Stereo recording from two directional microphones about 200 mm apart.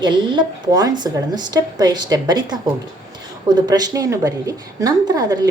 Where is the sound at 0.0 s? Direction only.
25° right (ahead or behind).